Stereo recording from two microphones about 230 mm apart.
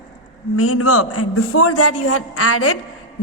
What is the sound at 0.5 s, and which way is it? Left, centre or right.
Speech, left.